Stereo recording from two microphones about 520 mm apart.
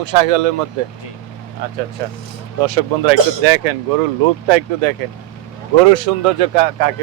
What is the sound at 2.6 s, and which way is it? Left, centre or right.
Speech, right.